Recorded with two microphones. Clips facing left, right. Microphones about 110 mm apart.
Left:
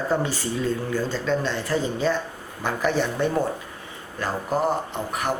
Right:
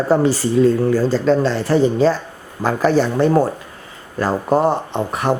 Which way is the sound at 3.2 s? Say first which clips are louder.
Right 8 dB; 85° right.